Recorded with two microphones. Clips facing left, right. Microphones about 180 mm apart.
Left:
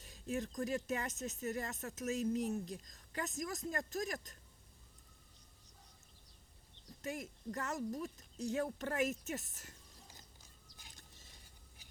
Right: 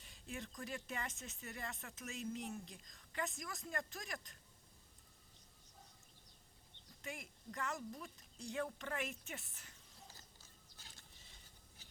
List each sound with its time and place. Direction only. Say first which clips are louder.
0.0 s speech: left 9 dB; 40° left (ahead or behind)
7.0 s speech: left 7 dB; 40° left (ahead or behind)
10.1 s a sound: left 2 dB; 15° left (ahead or behind)